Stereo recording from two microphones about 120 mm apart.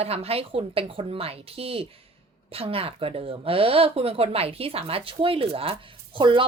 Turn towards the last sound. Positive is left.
turn(degrees=-45)  # may be behind; listen again after turning